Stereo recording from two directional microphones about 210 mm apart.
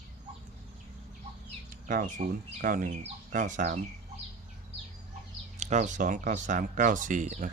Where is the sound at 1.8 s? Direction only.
40° right (ahead or behind).